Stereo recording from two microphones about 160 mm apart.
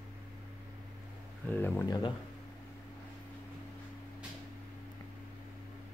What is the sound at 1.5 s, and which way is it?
Speech, 10° left (ahead or behind).